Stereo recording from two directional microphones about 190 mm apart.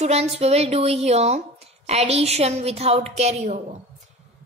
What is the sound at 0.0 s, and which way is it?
A woman's voice, 35° right (ahead or behind).